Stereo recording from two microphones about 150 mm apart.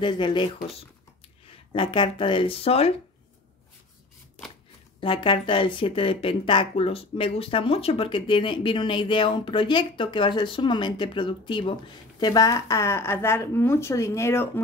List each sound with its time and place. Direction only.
0.0 s speech: 30° left (ahead or behind)
1.7 s speech: 35° left (ahead or behind)
5.0 s speech: 35° left (ahead or behind); by 14.6 s 15° left (ahead or behind)